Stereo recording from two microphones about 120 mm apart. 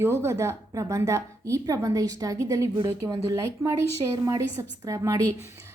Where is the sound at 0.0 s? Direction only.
20° right (ahead or behind).